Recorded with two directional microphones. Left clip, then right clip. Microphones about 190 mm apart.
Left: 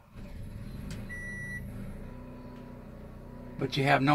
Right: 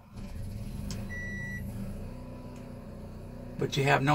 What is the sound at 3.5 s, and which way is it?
Speech, 20° left (ahead or behind).